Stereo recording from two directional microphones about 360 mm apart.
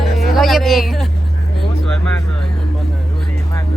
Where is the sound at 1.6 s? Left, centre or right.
Centre.